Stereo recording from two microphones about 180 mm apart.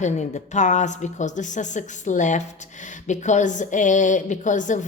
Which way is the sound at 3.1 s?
40° left (ahead or behind).